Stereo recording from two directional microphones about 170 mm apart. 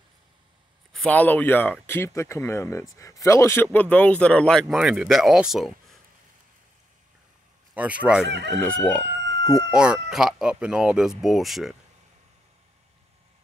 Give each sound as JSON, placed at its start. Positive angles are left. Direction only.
{"t": 0.9, "sound": "speech", "side_deg": 5}
{"t": 7.7, "sound": "speech", "side_deg": -10}
{"t": 8.3, "sound": "chicken", "side_deg": -90}
{"t": 8.6, "sound": "speech", "side_deg": 5}